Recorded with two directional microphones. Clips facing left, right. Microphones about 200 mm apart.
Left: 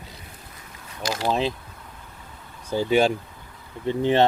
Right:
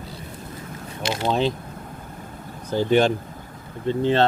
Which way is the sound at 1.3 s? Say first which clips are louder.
Right 2 dB; centre (ahead or behind).